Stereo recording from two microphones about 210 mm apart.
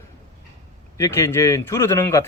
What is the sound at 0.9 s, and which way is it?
Speech, 15° left (ahead or behind).